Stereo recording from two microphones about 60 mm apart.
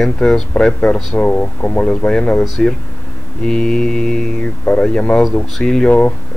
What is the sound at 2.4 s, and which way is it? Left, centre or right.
Speech, centre.